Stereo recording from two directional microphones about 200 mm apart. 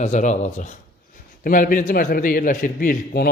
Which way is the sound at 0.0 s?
35° left (ahead or behind).